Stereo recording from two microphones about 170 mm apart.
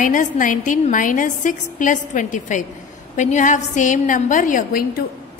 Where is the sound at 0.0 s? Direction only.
50° left (ahead or behind).